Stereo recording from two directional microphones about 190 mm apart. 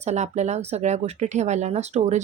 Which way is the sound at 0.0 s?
35° right (ahead or behind).